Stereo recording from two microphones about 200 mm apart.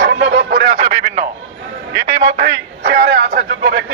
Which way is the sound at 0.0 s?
55° right (ahead or behind).